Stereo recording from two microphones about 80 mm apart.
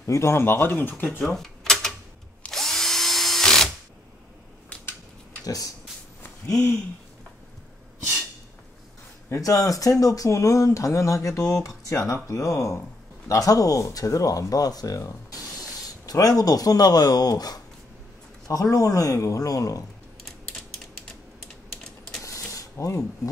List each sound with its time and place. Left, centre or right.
0.0 s speech: left
1.2 s typewriter: centre
2.5 s drill: centre
5.4 s speech: left
9.3 s speech: left
22.2 s a sound: left